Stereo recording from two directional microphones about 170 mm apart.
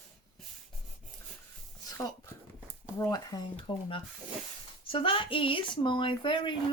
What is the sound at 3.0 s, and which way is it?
Speech, 20° left (ahead or behind).